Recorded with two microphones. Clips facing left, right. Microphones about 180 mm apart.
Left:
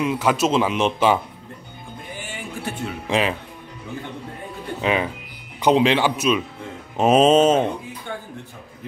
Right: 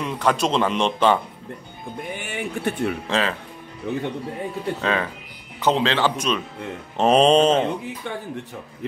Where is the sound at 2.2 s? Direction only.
60° right (ahead or behind).